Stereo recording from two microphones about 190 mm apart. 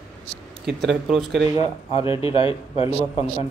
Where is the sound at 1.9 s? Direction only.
30° left (ahead or behind).